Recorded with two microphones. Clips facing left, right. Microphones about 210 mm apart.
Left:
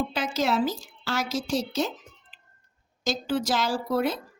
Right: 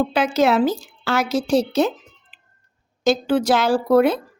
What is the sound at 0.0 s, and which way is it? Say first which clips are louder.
A woman's voice: right 9 dB; 65° right (ahead or behind).